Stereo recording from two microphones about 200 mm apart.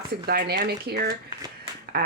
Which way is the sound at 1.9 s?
50° right (ahead or behind).